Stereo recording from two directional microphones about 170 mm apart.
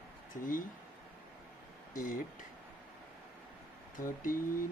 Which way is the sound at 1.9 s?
55° left (ahead or behind).